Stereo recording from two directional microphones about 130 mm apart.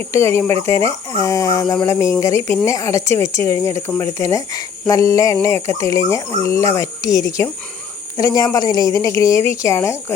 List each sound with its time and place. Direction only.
0.1 s speech: 20° left (ahead or behind)